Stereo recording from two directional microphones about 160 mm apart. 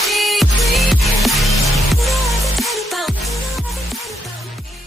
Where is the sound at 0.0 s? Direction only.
Centre (ahead or behind).